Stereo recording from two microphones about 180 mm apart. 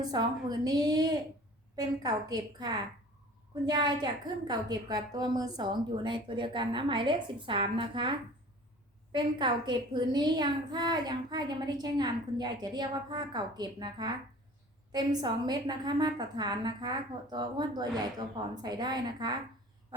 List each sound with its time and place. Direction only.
0.0 s a woman's voice: 20° right (ahead or behind)
9.1 s a woman's voice: 25° right (ahead or behind)